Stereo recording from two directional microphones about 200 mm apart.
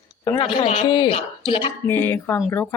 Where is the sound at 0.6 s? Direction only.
30° left (ahead or behind).